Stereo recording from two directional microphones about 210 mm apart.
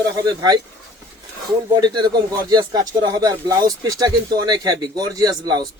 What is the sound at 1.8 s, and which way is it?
Speech, 20° right (ahead or behind).